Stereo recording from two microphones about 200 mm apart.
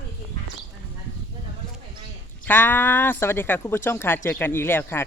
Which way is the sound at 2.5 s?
10° left (ahead or behind).